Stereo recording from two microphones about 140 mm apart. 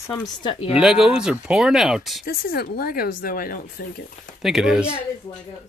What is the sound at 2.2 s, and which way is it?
Speech, 90° left.